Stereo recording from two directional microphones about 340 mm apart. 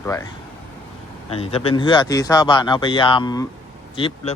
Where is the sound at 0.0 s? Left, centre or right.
Centre.